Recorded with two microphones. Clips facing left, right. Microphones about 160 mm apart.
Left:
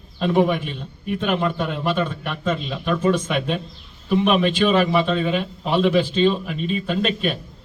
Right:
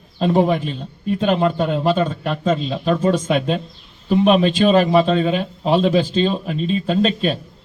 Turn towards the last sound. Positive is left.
turn(degrees=-35)  # may be behind; listen again after turning